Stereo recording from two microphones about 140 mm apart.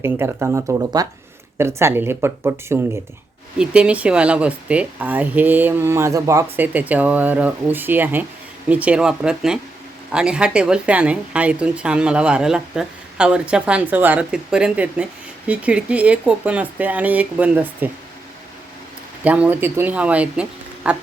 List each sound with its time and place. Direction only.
0.0 s a woman's voice: 15° right (ahead or behind)
3.6 s a woman's voice: 10° right (ahead or behind)
6.6 s a woman's voice: 10° right (ahead or behind)
19.2 s a woman's voice: 10° right (ahead or behind)